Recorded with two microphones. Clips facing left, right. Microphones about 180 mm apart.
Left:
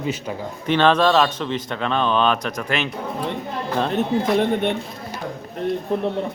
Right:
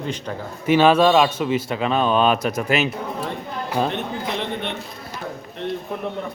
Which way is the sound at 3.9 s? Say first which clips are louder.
Left 7 dB; 40° left (ahead or behind).